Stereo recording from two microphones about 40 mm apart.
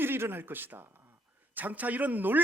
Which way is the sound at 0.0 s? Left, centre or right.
Right.